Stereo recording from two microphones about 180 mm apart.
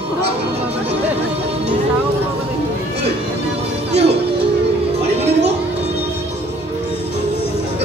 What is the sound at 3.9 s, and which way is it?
Music, 70° right (ahead or behind).